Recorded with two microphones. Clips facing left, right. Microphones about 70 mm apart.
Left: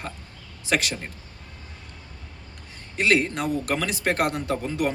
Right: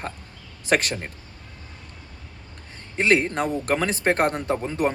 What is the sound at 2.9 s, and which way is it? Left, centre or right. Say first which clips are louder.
Speech: right 2 dB; right.